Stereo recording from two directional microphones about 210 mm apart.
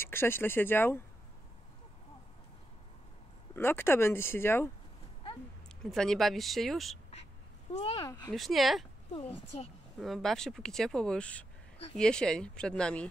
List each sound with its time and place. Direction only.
0.0 s speech: 10° left (ahead or behind)
3.5 s speech: 10° left (ahead or behind)
5.9 s speech: centre (ahead or behind)
7.7 s speech: 30° left (ahead or behind)
8.0 s speech: 15° left (ahead or behind)
8.3 s speech: centre (ahead or behind)
9.9 s speech: centre (ahead or behind)